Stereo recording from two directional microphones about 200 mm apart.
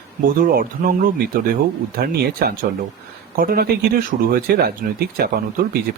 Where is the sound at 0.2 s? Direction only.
45° right (ahead or behind).